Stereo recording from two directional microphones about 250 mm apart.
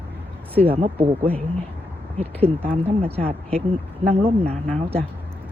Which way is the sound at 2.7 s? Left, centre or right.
Right.